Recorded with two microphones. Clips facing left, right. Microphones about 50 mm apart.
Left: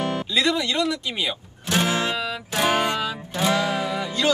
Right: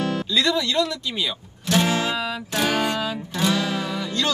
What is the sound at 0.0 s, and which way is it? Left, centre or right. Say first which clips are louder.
Music: right 1 dB; left.